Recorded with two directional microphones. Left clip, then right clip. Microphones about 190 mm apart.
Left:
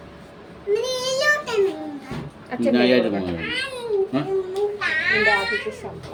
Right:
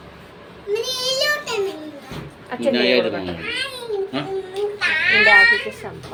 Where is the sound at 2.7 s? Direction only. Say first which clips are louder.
Even; 45° left (ahead or behind).